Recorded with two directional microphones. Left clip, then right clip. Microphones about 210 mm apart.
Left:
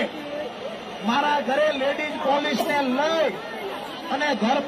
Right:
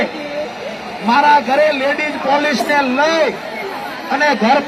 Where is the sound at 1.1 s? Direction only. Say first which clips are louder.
Right 11 dB; 10° right (ahead or behind).